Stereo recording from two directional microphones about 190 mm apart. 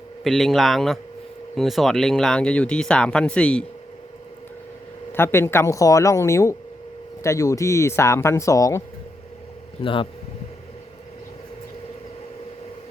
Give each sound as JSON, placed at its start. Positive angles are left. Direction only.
{"t": 0.3, "sound": "speech", "side_deg": 0}
{"t": 5.1, "sound": "speech", "side_deg": 15}
{"t": 9.8, "sound": "speech", "side_deg": 25}